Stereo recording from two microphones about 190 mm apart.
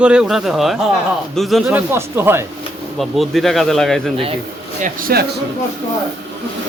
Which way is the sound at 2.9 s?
Centre (ahead or behind).